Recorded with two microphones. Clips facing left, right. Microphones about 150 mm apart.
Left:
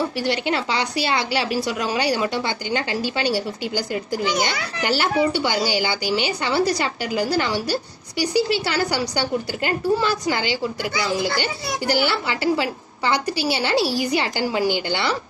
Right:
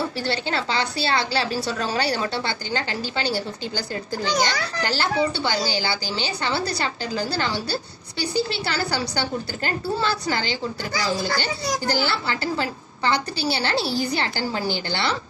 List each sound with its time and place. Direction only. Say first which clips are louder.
0.2 s a woman's voice: left 3 dB; 15° left (ahead or behind)
10.9 s speech: left 1 dB; 40° right (ahead or behind)
11.3 s a woman's voice: even; 15° left (ahead or behind)